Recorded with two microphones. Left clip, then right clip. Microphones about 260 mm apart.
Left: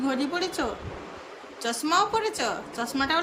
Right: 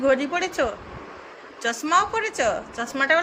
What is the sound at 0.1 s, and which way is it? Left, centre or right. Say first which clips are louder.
Speech: right 6 dB; centre.